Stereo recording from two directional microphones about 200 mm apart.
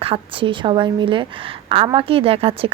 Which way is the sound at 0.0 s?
25° right (ahead or behind).